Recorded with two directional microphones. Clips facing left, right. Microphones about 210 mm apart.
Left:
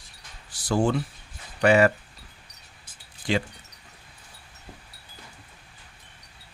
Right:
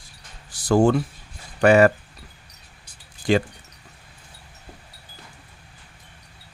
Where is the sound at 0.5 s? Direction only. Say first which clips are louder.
Right 6 dB; 45° right (ahead or behind).